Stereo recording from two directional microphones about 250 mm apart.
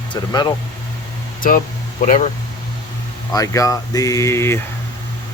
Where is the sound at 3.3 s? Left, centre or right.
Centre.